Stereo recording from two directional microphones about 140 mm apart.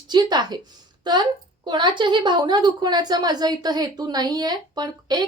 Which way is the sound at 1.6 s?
35° right (ahead or behind).